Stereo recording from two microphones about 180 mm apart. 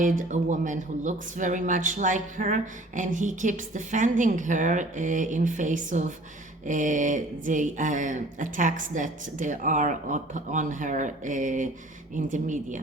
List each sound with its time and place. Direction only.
0.0 s speech: 45° right (ahead or behind)